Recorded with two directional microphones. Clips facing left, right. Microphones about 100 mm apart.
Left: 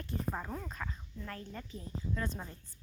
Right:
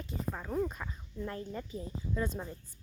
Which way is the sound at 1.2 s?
20° right (ahead or behind).